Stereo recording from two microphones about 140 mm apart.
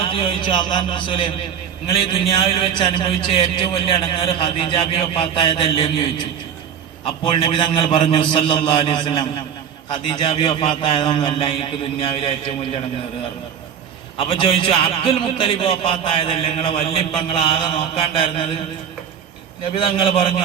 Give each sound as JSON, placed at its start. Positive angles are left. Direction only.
{"t": 0.0, "sound": "a man's voice", "side_deg": 40}
{"t": 7.3, "sound": "a man's voice", "side_deg": 40}
{"t": 14.2, "sound": "a man's voice", "side_deg": 40}
{"t": 19.7, "sound": "a man's voice", "side_deg": 40}